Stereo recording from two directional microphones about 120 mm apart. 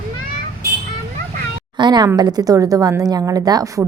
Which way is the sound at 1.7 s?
35° right (ahead or behind).